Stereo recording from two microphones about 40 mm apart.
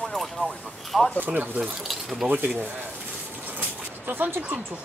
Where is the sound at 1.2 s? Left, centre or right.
Right.